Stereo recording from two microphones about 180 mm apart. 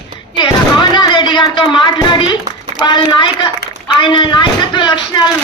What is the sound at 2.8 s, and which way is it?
Speech, 25° left (ahead or behind).